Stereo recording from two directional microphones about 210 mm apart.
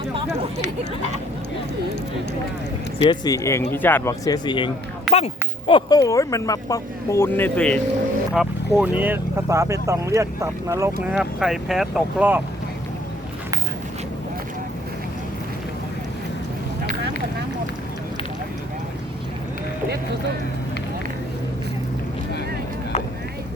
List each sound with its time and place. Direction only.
3.0 s speech: 20° left (ahead or behind)
5.1 s speech: 5° right (ahead or behind)
5.6 s speech: 20° left (ahead or behind); by 10.9 s 15° right (ahead or behind)
11.1 s speech: 5° right (ahead or behind)